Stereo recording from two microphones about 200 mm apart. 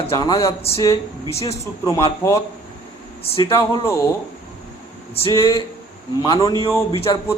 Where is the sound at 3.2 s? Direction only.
30° left (ahead or behind).